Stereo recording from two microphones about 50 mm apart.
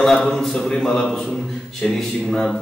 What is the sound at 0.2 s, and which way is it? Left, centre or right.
A man's voice, centre.